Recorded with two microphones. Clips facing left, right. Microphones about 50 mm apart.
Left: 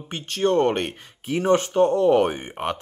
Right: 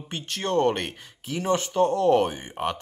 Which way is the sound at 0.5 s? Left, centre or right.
Left.